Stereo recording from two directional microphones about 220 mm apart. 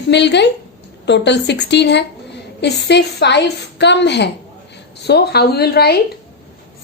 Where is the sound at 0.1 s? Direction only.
50° left (ahead or behind).